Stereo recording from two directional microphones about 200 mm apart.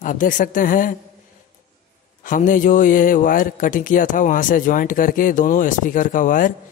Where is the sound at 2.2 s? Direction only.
40° left (ahead or behind).